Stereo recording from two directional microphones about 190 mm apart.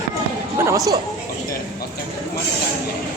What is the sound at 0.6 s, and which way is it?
Speech, 15° right (ahead or behind).